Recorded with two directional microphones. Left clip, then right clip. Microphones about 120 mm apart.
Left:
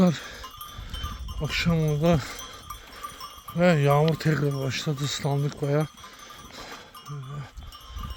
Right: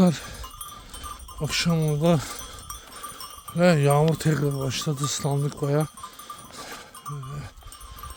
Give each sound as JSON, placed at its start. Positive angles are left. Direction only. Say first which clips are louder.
{"t": 0.0, "sound": "sheep", "louder": "right 1 dB", "side_deg": -30}
{"t": 1.4, "sound": "speech", "louder": "right 1 dB", "side_deg": -40}
{"t": 3.5, "sound": "speech", "louder": "right 1 dB", "side_deg": -35}